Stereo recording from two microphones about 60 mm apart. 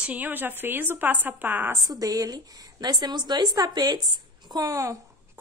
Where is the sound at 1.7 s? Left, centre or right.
Right.